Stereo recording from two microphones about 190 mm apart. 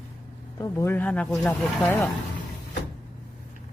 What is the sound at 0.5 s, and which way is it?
Speech, 15° left (ahead or behind).